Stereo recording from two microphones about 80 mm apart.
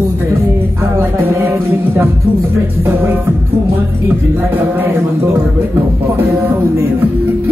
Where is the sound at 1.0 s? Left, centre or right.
Right.